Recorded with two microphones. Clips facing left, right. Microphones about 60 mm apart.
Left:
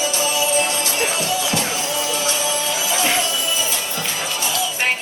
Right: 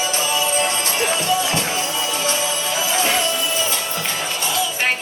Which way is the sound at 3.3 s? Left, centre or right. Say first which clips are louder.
Right 1 dB; right.